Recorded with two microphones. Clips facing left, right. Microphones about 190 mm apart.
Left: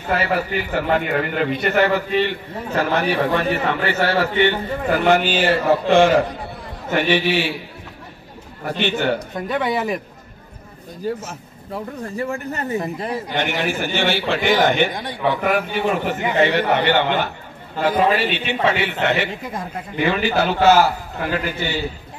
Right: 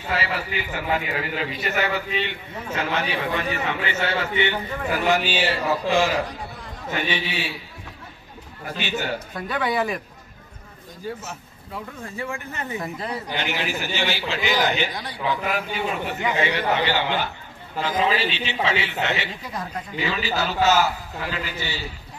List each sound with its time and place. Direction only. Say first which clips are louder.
0.1 s a man's voice: left 7 dB; 50° left (ahead or behind)
8.8 s a man's voice: left 7 dB; 55° left (ahead or behind)
9.3 s speech: left 4 dB; 25° left (ahead or behind)
11.1 s speech: left 3 dB; 45° left (ahead or behind)
13.4 s a man's voice: left 7 dB; 50° left (ahead or behind)